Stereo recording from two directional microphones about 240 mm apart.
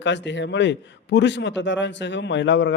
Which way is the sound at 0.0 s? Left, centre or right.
Left.